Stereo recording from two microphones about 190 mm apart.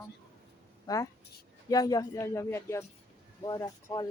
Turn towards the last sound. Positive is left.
turn(degrees=20)  # may be behind; listen again after turning